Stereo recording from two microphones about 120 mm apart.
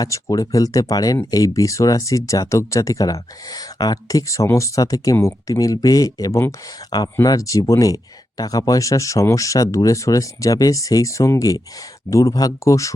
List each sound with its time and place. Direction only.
0.0 s speech: 30° left (ahead or behind)